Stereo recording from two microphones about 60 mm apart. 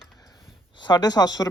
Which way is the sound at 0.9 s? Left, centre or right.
Left.